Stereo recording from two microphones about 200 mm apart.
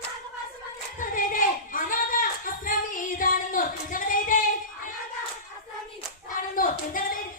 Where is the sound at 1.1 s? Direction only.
45° left (ahead or behind).